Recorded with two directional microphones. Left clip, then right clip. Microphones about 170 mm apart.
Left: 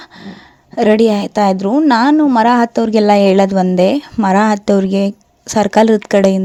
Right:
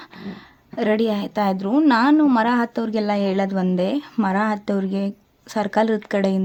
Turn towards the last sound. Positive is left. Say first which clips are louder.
# left 10 dB
turn(degrees=40)  # may be behind; listen again after turning